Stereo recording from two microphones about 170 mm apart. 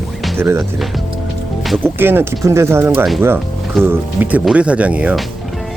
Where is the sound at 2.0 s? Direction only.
15° right (ahead or behind).